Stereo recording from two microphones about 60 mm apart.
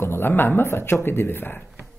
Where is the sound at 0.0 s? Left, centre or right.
Left.